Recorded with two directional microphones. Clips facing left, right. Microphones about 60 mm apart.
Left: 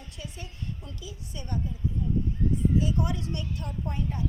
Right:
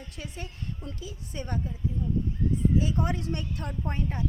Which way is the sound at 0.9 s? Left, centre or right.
Right.